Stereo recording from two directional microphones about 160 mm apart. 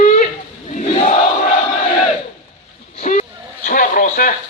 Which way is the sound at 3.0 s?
50° left (ahead or behind).